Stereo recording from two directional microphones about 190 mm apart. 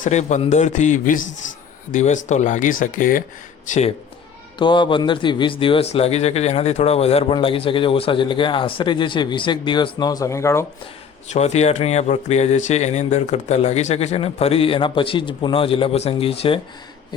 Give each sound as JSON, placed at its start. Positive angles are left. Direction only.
{"t": 0.0, "sound": "speech", "side_deg": 40}
{"t": 4.5, "sound": "a man's voice", "side_deg": 25}
{"t": 11.3, "sound": "speech", "side_deg": 35}